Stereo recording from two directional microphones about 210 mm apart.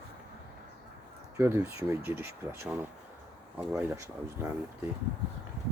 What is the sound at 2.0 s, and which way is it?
Speech, 10° right (ahead or behind).